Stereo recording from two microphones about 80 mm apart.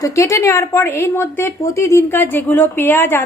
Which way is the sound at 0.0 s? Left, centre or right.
Left.